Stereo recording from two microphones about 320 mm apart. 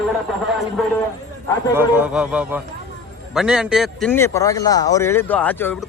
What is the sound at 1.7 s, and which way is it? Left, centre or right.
Speech, centre.